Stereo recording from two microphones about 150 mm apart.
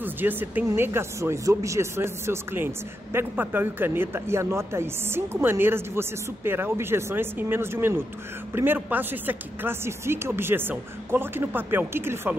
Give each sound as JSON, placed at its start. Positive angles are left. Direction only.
{"t": 0.0, "sound": "speech", "side_deg": -15}